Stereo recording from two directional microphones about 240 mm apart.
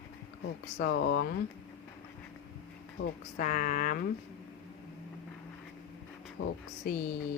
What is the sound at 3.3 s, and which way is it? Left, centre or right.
Speech, left.